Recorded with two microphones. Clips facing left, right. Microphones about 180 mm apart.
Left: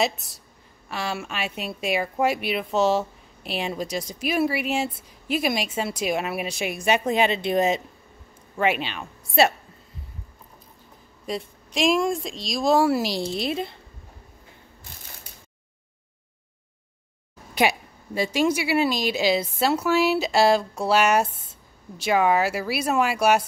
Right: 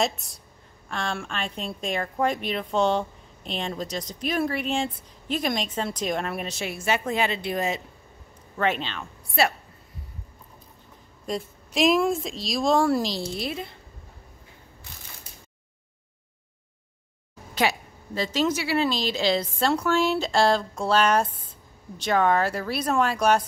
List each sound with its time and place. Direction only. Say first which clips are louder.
0.0 s a woman's voice: left 1 dB; 5° left (ahead or behind); by 7.8 s 20° left (ahead or behind)
8.5 s a woman's voice: left 2 dB; 10° left (ahead or behind)
9.4 s a woman's voice: left 4 dB; 25° left (ahead or behind)
11.2 s speech: even; centre (ahead or behind); by 13.7 s 20° left (ahead or behind)
17.6 s a woman's voice: left 3 dB; 15° left (ahead or behind)